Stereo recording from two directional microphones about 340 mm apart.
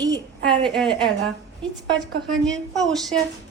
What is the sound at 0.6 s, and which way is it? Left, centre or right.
A child's voice, centre.